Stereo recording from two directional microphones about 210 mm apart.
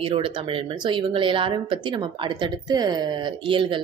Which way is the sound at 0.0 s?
25° right (ahead or behind).